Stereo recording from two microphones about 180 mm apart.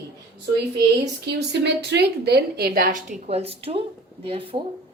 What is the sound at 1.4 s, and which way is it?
A woman's voice, 70° right (ahead or behind).